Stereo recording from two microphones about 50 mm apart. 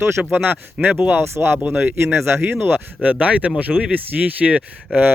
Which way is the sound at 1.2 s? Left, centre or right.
Right.